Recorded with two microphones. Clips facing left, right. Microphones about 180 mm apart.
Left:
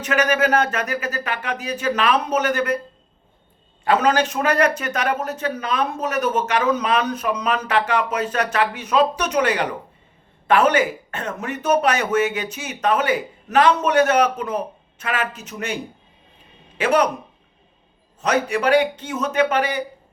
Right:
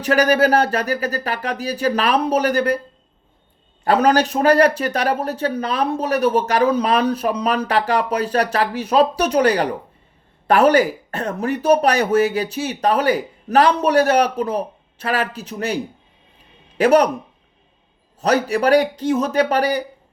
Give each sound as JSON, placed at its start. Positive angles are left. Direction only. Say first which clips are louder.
{"t": 0.0, "sound": "a man's voice", "louder": "right 4 dB", "side_deg": -35}
{"t": 3.8, "sound": "a man's voice", "louder": "right 3 dB", "side_deg": -40}
{"t": 18.2, "sound": "a man's voice", "louder": "right 3 dB", "side_deg": -35}